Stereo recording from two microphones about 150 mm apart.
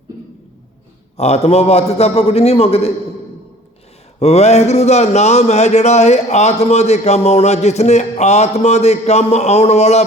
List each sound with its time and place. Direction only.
1.1 s speech: 45° left (ahead or behind)
4.2 s speech: 45° left (ahead or behind)